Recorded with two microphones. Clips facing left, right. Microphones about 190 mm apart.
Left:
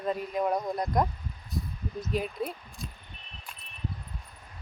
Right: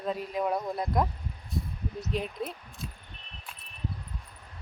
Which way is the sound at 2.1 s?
Centre (ahead or behind).